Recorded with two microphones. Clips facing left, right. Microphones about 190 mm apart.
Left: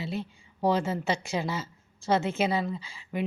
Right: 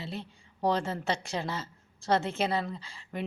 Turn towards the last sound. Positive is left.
turn(degrees=5)  # may be behind; listen again after turning